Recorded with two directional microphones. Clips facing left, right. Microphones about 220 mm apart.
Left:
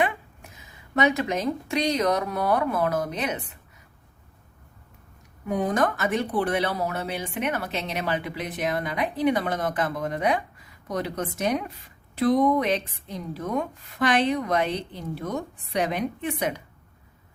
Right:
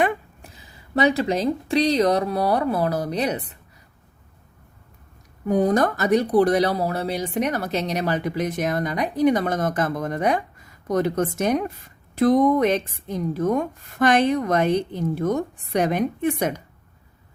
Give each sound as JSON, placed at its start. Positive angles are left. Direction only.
{"t": 0.4, "sound": "speech", "side_deg": -35}
{"t": 5.5, "sound": "speech", "side_deg": -40}